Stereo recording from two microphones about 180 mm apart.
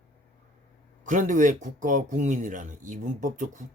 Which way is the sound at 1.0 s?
45° right (ahead or behind).